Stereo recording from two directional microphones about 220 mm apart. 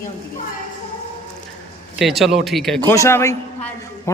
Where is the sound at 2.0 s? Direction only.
Centre (ahead or behind).